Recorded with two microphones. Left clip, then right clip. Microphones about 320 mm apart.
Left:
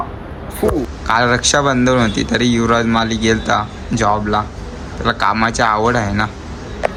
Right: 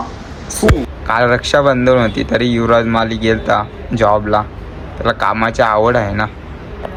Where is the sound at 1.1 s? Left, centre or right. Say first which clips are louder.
Right 1 dB; centre.